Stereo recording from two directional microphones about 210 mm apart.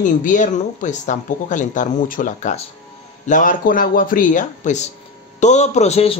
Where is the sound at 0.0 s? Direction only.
35° left (ahead or behind).